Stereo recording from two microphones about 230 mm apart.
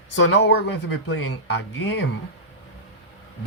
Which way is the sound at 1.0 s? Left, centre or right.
Left.